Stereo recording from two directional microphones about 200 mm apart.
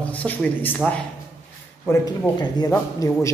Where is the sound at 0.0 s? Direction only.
5° left (ahead or behind).